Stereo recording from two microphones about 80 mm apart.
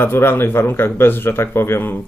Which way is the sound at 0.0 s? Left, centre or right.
Left.